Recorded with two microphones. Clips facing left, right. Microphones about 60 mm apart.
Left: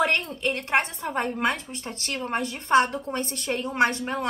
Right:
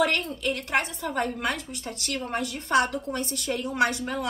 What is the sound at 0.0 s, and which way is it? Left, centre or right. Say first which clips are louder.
A woman's voice: left 1 dB; left.